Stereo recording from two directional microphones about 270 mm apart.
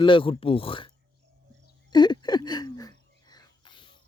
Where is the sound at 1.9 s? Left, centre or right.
Centre.